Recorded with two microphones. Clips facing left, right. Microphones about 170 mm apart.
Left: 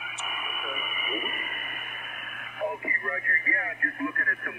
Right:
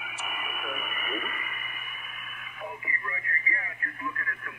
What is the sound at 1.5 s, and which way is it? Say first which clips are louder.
Radio: left 2 dB; 50° left (ahead or behind).